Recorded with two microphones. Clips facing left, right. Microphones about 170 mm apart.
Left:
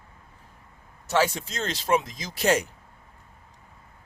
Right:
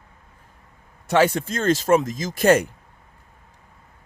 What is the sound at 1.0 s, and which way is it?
Speech, 55° right (ahead or behind).